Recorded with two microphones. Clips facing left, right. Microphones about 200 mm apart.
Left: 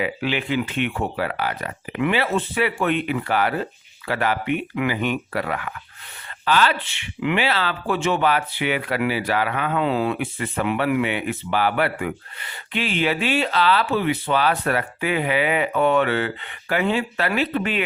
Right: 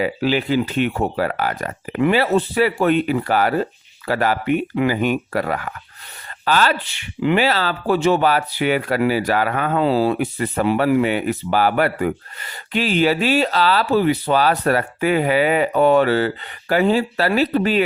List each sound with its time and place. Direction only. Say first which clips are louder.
0.0 s speech: right 5 dB; 40° right (ahead or behind)